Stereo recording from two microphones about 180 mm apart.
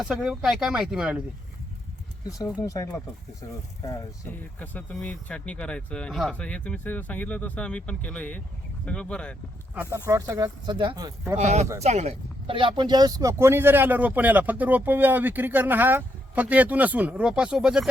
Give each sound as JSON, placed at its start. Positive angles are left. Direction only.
{"t": 0.0, "sound": "speech", "side_deg": -5}
{"t": 2.6, "sound": "speech", "side_deg": 20}
{"t": 10.1, "sound": "speech", "side_deg": -20}
{"t": 11.3, "sound": "speech", "side_deg": -40}